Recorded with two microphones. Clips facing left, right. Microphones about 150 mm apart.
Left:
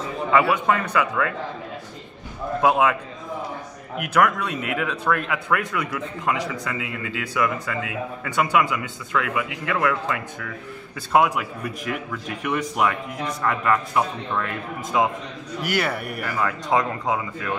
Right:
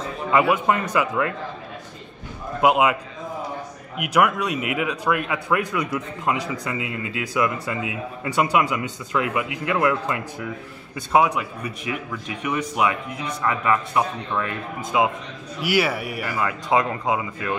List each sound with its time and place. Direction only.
0.3 s speech: 20° right (ahead or behind)
2.6 s speech: 15° right (ahead or behind)
4.0 s speech: 10° right (ahead or behind)
11.1 s speech: centre (ahead or behind)
14.9 s speech: 15° right (ahead or behind)
16.7 s speech: 10° right (ahead or behind)